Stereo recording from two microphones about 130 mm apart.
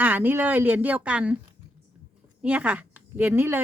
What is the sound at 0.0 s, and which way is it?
Speech, 15° right (ahead or behind).